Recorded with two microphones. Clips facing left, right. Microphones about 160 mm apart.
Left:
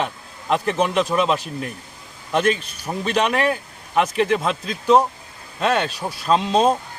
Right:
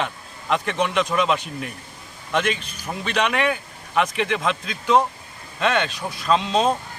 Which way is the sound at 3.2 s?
35° left (ahead or behind).